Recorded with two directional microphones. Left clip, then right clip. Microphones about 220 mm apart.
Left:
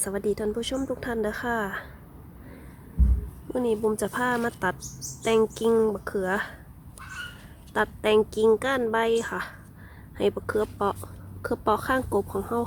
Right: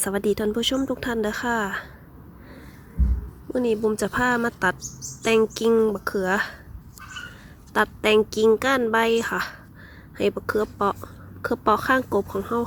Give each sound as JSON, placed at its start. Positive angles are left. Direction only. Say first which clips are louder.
{"t": 0.0, "sound": "a woman's voice", "louder": "right 4 dB", "side_deg": -20}
{"t": 3.5, "sound": "a woman's voice", "louder": "right 3 dB", "side_deg": -15}
{"t": 7.7, "sound": "a woman's voice", "louder": "right 3 dB", "side_deg": -15}